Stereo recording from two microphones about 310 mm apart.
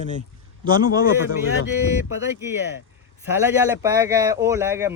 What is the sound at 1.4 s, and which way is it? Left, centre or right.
Speech, left.